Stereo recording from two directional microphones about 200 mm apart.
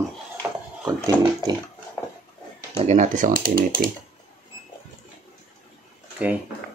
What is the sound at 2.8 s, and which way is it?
Speech, 40° right (ahead or behind).